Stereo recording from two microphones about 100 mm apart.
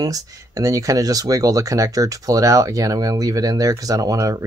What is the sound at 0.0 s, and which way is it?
Speech, 35° right (ahead or behind).